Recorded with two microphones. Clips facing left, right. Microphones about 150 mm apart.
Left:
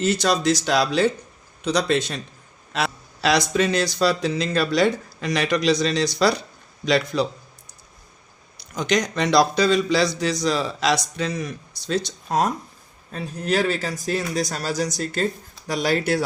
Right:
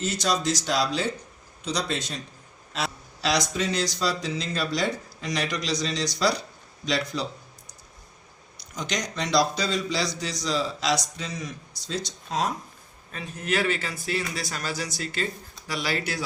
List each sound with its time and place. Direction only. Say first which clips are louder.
0.0 s a man's voice: left 6 dB; 65° left (ahead or behind)
8.7 s a man's voice: left 9 dB; 60° left (ahead or behind)
13.1 s speech: left 5 dB; 35° left (ahead or behind)